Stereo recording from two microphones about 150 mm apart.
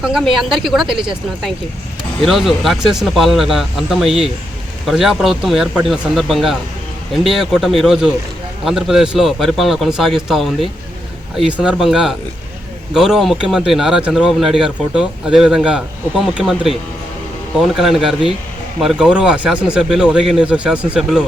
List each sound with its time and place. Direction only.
0.0 s speech: 5° right (ahead or behind)
0.9 s speech: 35° right (ahead or behind)
2.2 s speech: centre (ahead or behind)